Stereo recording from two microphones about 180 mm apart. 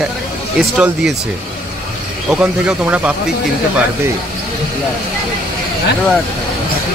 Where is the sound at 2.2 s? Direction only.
5° right (ahead or behind).